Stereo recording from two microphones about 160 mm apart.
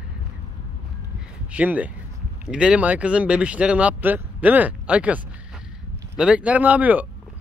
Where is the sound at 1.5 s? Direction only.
10° right (ahead or behind).